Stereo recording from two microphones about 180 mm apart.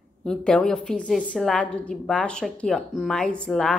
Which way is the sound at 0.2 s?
5° left (ahead or behind).